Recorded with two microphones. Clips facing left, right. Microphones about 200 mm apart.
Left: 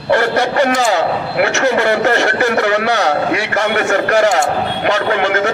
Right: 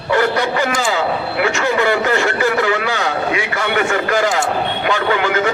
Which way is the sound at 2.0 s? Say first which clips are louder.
Left 2 dB; 70° left (ahead or behind).